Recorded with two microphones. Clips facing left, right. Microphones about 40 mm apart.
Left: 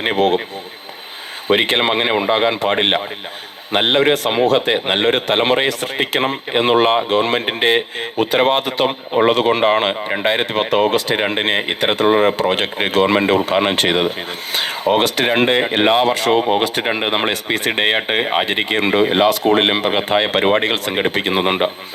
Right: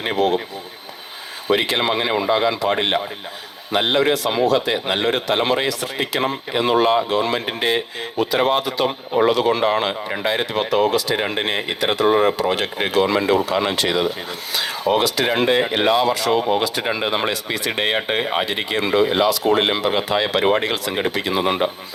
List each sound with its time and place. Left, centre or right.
0.0 s a man's voice: left
1.5 s a man's voice: left